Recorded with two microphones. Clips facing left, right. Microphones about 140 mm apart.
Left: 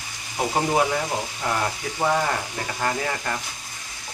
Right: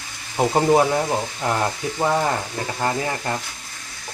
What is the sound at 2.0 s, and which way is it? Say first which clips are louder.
Speech: right 2 dB; 15° right (ahead or behind).